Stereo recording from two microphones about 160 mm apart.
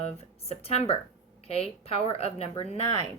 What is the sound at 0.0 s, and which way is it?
A woman's voice, 40° left (ahead or behind).